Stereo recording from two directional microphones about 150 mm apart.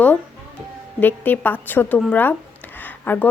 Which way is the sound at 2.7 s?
15° left (ahead or behind).